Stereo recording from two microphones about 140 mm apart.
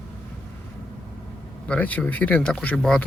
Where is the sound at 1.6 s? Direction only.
10° left (ahead or behind).